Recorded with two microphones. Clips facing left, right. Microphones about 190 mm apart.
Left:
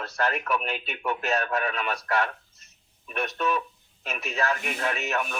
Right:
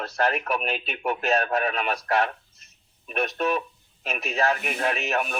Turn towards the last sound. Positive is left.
turn(degrees=-25)  # may be behind; listen again after turning